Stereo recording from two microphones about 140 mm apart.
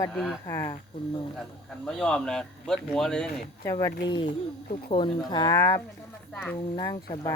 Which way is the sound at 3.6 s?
25° left (ahead or behind).